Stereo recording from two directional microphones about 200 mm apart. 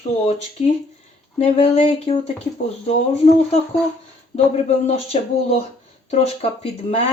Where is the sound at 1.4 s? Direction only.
30° left (ahead or behind).